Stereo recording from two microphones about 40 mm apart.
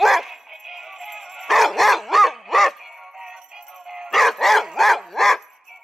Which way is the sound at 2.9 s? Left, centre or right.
Centre.